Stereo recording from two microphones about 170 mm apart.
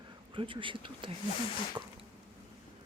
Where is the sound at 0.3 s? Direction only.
30° right (ahead or behind).